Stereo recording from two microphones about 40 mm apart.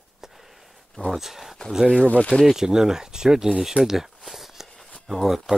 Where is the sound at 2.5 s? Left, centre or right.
Centre.